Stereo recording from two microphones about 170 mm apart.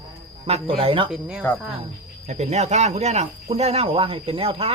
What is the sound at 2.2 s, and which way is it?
Speech, 40° right (ahead or behind).